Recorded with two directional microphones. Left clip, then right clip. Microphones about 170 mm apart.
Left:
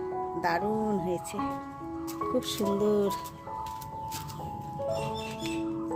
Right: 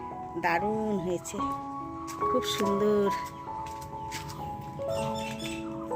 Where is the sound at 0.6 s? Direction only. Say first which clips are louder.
Even; 5° left (ahead or behind).